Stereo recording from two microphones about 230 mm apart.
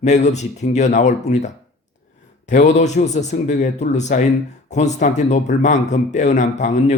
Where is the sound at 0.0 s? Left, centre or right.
Left.